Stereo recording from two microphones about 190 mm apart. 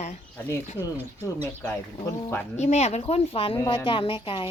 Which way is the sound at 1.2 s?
10° left (ahead or behind).